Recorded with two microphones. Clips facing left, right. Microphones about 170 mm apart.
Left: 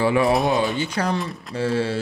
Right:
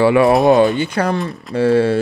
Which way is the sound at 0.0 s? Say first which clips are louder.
Right 7 dB; 70° right (ahead or behind).